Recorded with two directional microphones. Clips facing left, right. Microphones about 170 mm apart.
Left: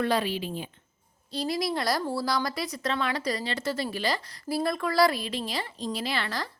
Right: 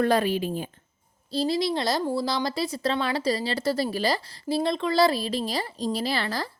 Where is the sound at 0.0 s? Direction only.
45° right (ahead or behind).